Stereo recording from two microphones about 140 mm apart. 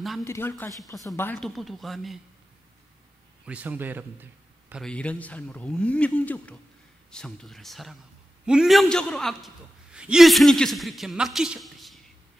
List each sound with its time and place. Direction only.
0.2 s speech: 20° left (ahead or behind)
1.3 s a man's voice: centre (ahead or behind)
3.4 s a man's voice: 10° right (ahead or behind)
4.8 s a man's voice: 10° left (ahead or behind)